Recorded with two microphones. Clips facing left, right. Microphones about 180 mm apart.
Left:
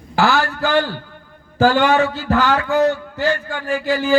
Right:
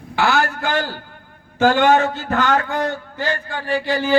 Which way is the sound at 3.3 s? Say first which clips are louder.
Left 3 dB; 40° right (ahead or behind).